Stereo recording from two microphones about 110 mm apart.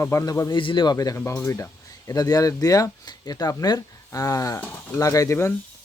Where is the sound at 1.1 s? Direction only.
25° left (ahead or behind).